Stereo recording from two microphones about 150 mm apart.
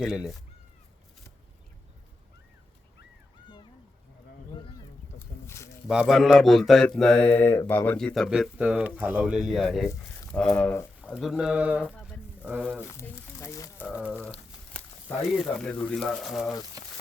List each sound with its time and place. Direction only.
0.0 s speech: 5° right (ahead or behind)
5.2 s a sound: 15° left (ahead or behind)
5.9 s speech: 5° right (ahead or behind)
11.1 s speech: centre (ahead or behind)
12.4 s a sound: 10° right (ahead or behind)
12.9 s speech: 15° left (ahead or behind)
13.8 s speech: 10° right (ahead or behind)
14.8 s a sound: 10° left (ahead or behind)
15.2 s speech: centre (ahead or behind)